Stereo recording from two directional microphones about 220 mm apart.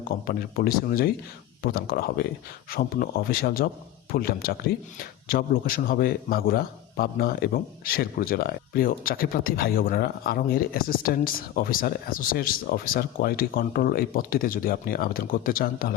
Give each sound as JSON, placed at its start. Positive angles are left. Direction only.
{"t": 0.3, "sound": "a man's voice", "side_deg": 40}